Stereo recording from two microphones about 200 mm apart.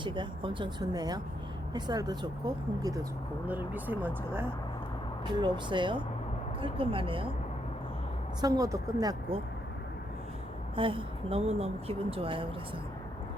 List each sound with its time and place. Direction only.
0.0 s speech: 25° right (ahead or behind)
5.2 s speech: 25° right (ahead or behind)
8.4 s speech: 20° right (ahead or behind)
10.8 s speech: 25° right (ahead or behind)